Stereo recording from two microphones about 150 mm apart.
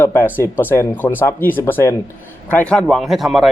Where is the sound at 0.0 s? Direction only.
15° left (ahead or behind).